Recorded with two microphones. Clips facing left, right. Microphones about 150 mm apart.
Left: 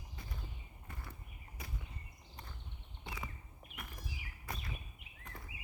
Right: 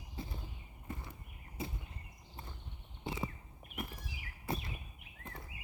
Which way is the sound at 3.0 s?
25° right (ahead or behind).